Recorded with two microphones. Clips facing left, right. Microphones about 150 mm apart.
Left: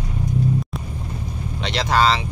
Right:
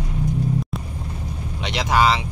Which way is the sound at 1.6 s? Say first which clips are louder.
Even; 15° right (ahead or behind).